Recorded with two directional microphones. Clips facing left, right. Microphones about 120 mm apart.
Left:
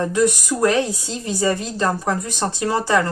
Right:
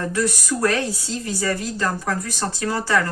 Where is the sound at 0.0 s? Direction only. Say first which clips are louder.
Left 5 dB; 20° left (ahead or behind).